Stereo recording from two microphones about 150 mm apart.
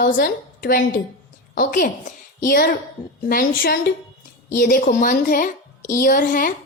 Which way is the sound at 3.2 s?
85° left.